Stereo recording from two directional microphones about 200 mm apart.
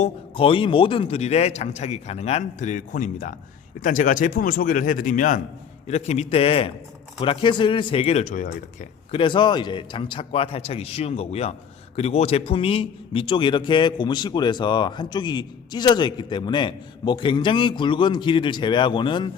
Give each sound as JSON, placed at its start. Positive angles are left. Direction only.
{"t": 0.0, "sound": "a man's voice", "side_deg": 25}
{"t": 9.1, "sound": "a man's voice", "side_deg": 25}